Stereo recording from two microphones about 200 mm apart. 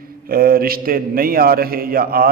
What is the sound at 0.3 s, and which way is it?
A man's voice, 45° right (ahead or behind).